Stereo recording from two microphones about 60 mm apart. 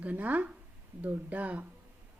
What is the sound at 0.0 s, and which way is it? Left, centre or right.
Speech, right.